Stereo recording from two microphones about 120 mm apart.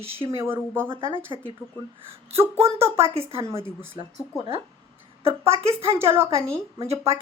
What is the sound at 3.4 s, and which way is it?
Speech, 25° right (ahead or behind).